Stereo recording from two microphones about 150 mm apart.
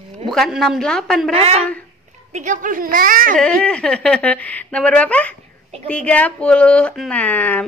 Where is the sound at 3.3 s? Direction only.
5° left (ahead or behind).